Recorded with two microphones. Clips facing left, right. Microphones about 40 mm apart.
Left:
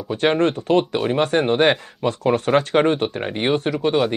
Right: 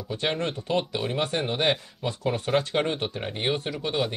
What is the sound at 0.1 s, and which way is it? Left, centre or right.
Speech, left.